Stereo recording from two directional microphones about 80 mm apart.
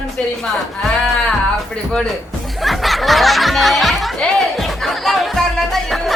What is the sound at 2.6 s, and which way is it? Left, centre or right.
Music, centre.